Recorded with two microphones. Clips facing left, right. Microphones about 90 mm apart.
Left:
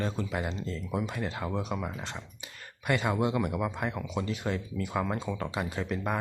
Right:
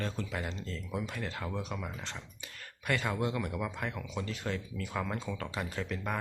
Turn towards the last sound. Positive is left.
turn(degrees=15)  # may be behind; listen again after turning